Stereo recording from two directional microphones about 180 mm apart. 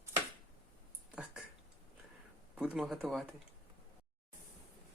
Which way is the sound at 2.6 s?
5° right (ahead or behind).